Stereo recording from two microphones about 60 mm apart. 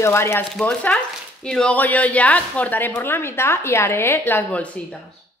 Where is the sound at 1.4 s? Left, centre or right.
Centre.